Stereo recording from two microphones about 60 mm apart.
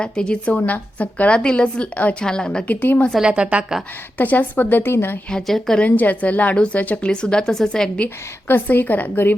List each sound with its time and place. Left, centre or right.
0.0 s a woman's voice: centre
2.6 s a woman's voice: left
3.2 s a woman's voice: centre
4.2 s speech: left
5.3 s a woman's voice: centre
5.8 s a woman's voice: left
7.1 s a woman's voice: centre
8.4 s speech: left